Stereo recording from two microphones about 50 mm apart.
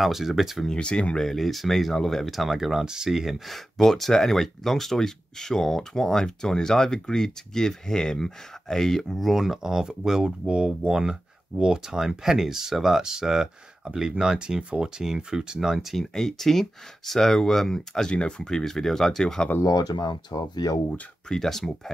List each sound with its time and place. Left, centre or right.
0.0 s speech: centre
0.7 s speech: left
1.2 s speech: centre
16.0 s speech: centre
21.3 s speech: centre